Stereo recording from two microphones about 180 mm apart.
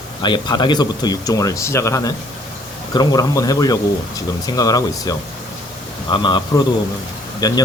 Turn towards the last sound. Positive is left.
turn(degrees=20)  # may be behind; listen again after turning